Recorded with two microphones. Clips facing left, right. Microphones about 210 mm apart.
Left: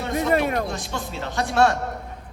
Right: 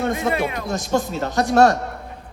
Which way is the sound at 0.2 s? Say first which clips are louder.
Left 1 dB; 45° left (ahead or behind).